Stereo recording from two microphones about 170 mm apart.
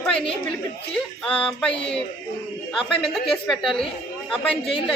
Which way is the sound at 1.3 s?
5° left (ahead or behind).